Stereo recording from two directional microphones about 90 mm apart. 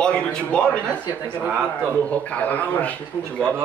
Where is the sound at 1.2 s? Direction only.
20° right (ahead or behind).